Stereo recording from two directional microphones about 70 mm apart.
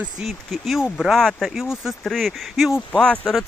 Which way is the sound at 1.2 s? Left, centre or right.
Centre.